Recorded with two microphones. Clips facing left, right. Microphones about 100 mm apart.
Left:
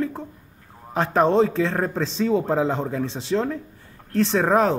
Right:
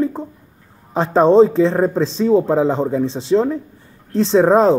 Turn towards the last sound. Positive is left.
turn(degrees=-25)  # may be behind; listen again after turning